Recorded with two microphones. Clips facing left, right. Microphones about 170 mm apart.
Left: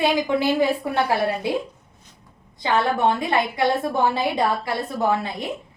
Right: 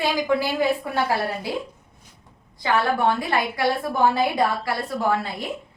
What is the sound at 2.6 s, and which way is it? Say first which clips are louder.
A woman's voice: left 1 dB; 20° left (ahead or behind).